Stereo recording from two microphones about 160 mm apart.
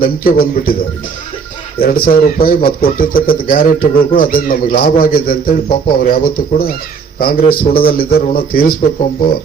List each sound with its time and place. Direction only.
0.0 s a man's voice: 65° left (ahead or behind)
1.8 s a man's voice: 65° left (ahead or behind)